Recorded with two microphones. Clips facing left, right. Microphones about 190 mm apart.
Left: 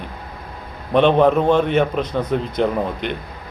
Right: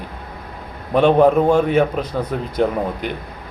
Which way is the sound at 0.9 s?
10° right (ahead or behind).